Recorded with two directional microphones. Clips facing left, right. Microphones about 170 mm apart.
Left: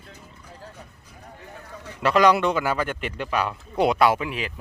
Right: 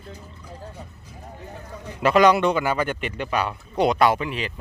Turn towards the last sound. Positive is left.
turn(degrees=5)  # may be behind; listen again after turning